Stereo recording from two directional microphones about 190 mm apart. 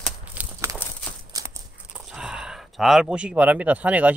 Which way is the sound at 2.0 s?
5° right (ahead or behind).